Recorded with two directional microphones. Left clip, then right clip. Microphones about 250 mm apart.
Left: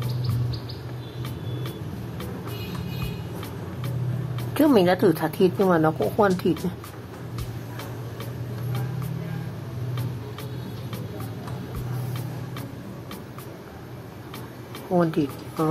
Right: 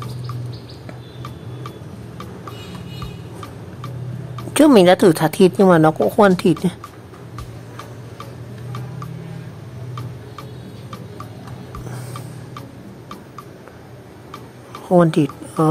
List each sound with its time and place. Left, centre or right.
4.6 s a woman's voice: right
14.9 s speech: right